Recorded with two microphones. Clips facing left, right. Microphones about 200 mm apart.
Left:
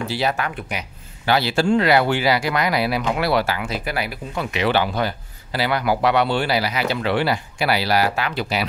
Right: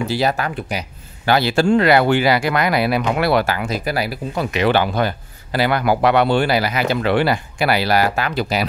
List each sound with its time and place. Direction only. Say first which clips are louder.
0.1 s speech: right 3 dB; 40° right (ahead or behind)